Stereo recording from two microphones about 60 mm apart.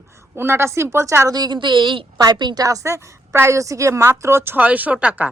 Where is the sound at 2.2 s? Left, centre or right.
Right.